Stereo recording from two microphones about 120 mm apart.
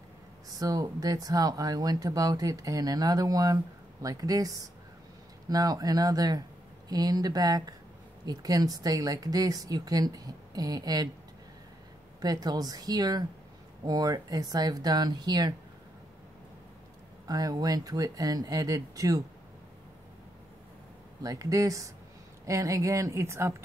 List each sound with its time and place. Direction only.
0.5 s speech: 30° right (ahead or behind)
12.2 s speech: 30° right (ahead or behind)
17.3 s speech: 30° right (ahead or behind)
21.2 s speech: 30° right (ahead or behind)